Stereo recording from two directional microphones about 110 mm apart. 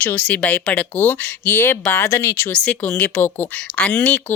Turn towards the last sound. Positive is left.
turn(degrees=15)  # may be behind; listen again after turning